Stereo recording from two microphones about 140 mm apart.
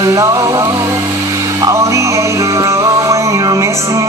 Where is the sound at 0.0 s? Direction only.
25° right (ahead or behind).